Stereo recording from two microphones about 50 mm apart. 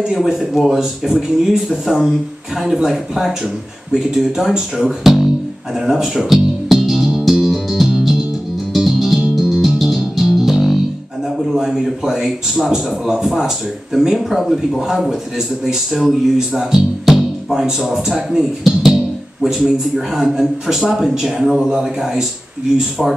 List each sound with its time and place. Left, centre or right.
0.1 s a man's voice: centre
5.8 s music: centre
11.3 s a man's voice: centre
15.0 s a man's voice: centre
17.0 s music: centre
17.6 s a man's voice: centre
18.8 s music: centre
19.4 s a man's voice: centre